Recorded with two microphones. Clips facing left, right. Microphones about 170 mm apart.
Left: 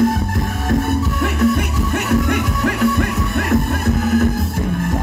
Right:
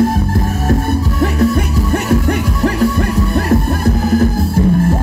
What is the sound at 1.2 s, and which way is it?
Music, 35° right (ahead or behind).